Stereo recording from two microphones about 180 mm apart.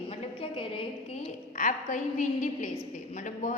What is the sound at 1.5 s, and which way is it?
A woman's voice, 45° left (ahead or behind).